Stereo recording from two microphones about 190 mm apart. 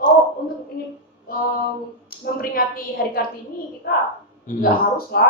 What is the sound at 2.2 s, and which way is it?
A woman's voice, 50° left (ahead or behind).